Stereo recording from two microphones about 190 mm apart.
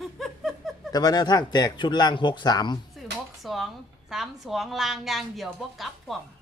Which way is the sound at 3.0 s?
Centre (ahead or behind).